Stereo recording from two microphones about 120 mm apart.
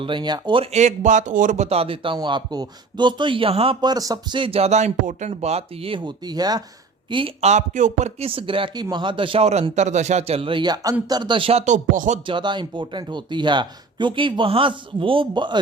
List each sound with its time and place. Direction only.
0.0 s speech: 40° right (ahead or behind)
0.7 s speech: 80° right; by 2.1 s 50° right (ahead or behind)
2.1 s speech: 40° right (ahead or behind)
3.8 s speech: 35° right (ahead or behind); by 5.3 s 75° right (ahead or behind)
5.3 s speech: 60° right (ahead or behind); by 6.6 s 35° right (ahead or behind)
7.1 s speech: 45° right (ahead or behind)
7.4 s speech: 85° right
8.3 s speech: 45° right (ahead or behind)
9.7 s speech: 75° right (ahead or behind); by 11.6 s 50° right (ahead or behind)
11.6 s a sound: 90° right
12.2 s speech: 40° right (ahead or behind)